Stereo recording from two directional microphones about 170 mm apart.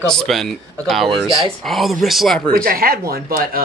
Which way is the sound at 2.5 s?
60° right (ahead or behind).